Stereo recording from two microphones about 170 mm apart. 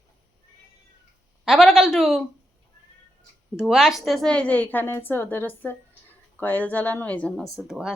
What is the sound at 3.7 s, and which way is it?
A woman's voice, centre (ahead or behind).